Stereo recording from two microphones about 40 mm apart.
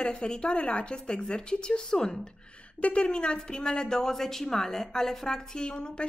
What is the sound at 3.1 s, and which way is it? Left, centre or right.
A woman's voice, left.